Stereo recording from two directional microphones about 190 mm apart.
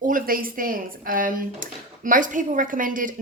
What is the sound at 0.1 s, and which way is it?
A woman's voice, 50° right (ahead or behind).